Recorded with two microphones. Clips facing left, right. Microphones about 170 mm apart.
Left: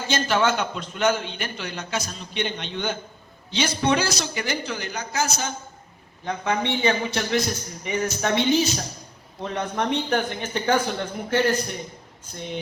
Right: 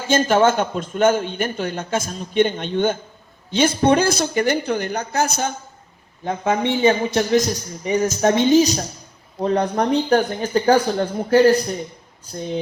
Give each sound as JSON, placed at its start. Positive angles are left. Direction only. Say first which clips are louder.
{"t": 0.1, "sound": "a man's voice", "louder": "right 7 dB", "side_deg": -45}
{"t": 6.7, "sound": "speech", "louder": "right 6 dB", "side_deg": -45}